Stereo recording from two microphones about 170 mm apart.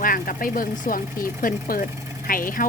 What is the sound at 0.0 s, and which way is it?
A woman's voice, 55° left (ahead or behind).